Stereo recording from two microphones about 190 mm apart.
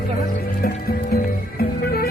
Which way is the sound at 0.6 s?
50° left (ahead or behind).